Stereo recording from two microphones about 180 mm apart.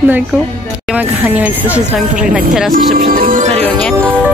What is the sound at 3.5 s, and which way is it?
Music, 5° left (ahead or behind).